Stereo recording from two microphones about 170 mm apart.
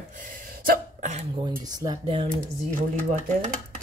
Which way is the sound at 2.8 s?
50° right (ahead or behind).